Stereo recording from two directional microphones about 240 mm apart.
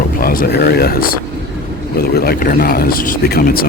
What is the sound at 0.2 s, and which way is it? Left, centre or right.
Speech, left.